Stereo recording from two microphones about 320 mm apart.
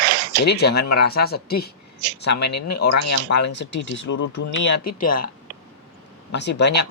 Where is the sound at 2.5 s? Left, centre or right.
Left.